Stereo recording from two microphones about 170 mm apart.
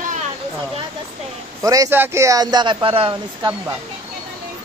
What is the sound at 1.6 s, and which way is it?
Speech, 20° right (ahead or behind).